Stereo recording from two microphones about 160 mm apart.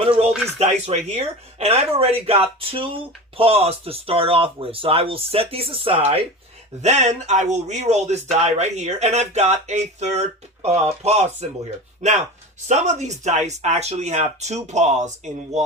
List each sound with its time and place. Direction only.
0.0 s speech: 40° right (ahead or behind)
12.6 s speech: 45° right (ahead or behind)